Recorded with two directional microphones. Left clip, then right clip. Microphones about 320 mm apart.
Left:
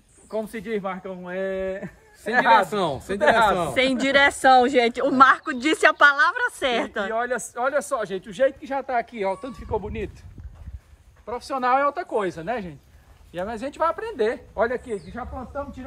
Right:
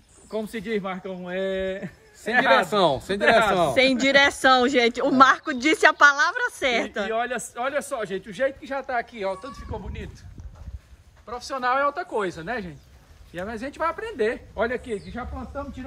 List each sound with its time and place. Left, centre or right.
0.3 s speech: centre
2.7 s speech: centre
3.2 s speech: centre
3.5 s speech: centre
11.2 s speech: left